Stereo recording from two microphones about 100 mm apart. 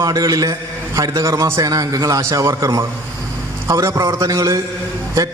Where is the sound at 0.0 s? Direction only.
35° right (ahead or behind).